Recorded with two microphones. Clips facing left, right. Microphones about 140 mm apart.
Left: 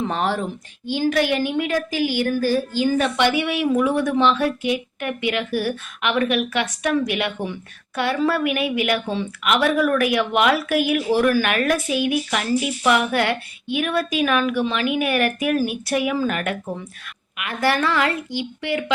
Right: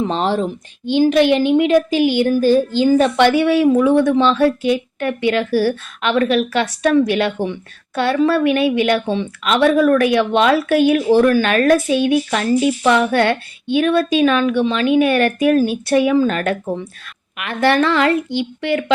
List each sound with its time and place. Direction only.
0.0 s speech: 20° right (ahead or behind)
3.3 s speech: 20° left (ahead or behind)
3.8 s a woman's voice: 25° right (ahead or behind)